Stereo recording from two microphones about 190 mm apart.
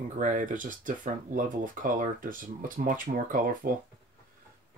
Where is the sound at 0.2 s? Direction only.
40° right (ahead or behind).